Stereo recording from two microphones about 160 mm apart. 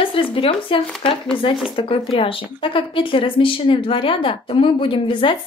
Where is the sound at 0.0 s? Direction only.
35° left (ahead or behind).